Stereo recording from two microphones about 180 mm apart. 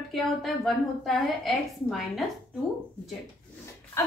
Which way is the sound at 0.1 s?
Centre (ahead or behind).